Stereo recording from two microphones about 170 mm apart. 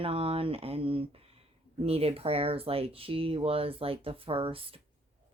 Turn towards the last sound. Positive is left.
turn(degrees=-35)  # may be behind; listen again after turning